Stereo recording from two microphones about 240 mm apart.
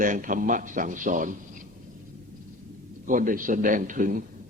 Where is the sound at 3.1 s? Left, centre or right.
Right.